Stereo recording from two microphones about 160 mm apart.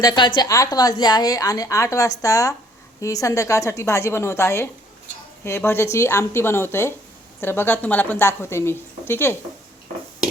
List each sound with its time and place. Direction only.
0.0 s a woman's voice: 25° left (ahead or behind)